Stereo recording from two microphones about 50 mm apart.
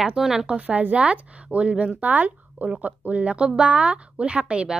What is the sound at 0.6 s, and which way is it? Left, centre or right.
A woman's voice, right.